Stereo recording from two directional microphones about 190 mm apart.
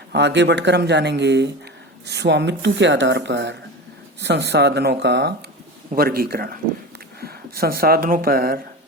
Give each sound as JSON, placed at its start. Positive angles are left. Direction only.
{"t": 0.1, "sound": "speech", "side_deg": -65}
{"t": 6.0, "sound": "a man's voice", "side_deg": -50}